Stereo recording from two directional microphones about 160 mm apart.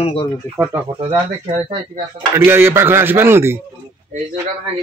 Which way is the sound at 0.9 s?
35° right (ahead or behind).